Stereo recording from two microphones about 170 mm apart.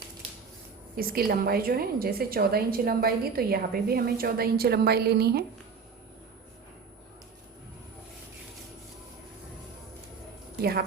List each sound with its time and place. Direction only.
0.9 s a woman's voice: 60° right (ahead or behind)
10.6 s a woman's voice: 65° right (ahead or behind)